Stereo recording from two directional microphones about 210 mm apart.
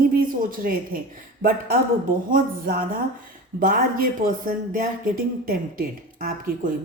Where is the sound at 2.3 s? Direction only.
40° right (ahead or behind).